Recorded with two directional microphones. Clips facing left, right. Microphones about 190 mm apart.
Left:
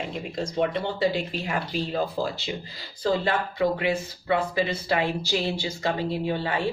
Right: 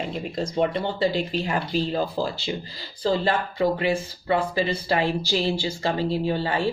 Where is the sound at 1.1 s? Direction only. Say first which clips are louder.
Right 3 dB; 35° right (ahead or behind).